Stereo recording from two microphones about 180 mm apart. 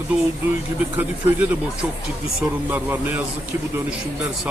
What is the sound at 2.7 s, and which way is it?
Speech, 10° right (ahead or behind).